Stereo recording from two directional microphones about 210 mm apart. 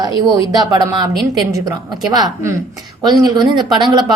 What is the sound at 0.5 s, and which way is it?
A woman's voice, 20° right (ahead or behind).